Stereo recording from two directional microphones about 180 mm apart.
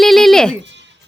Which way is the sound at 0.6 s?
80° right.